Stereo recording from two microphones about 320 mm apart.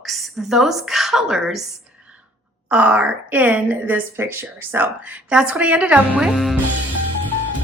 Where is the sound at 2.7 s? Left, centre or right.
Centre.